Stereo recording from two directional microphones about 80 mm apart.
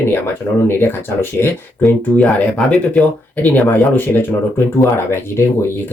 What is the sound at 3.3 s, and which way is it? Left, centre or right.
Speech, left.